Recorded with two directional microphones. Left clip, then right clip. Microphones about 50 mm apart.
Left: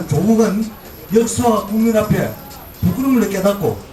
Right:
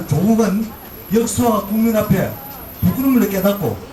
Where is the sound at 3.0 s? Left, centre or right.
Centre.